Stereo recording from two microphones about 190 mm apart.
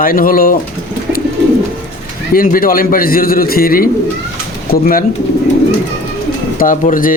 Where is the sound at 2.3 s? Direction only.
50° left (ahead or behind).